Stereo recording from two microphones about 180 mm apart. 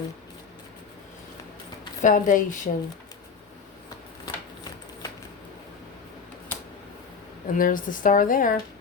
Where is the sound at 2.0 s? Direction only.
50° left (ahead or behind).